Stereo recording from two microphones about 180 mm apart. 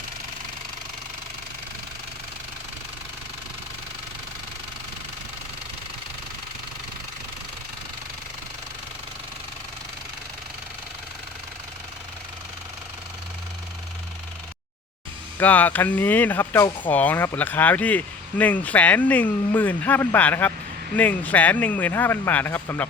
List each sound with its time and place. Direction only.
15.4 s speech: 10° left (ahead or behind)